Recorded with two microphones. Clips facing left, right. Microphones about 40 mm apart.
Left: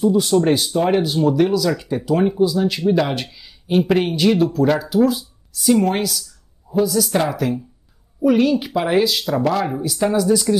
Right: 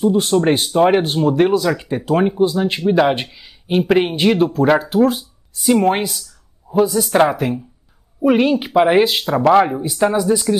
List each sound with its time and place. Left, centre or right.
0.0 s speech: right